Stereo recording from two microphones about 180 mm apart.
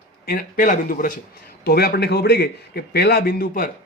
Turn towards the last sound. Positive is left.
turn(degrees=55)  # may be behind; listen again after turning